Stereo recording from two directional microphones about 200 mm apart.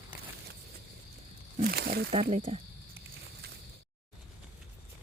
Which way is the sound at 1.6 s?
50° right (ahead or behind).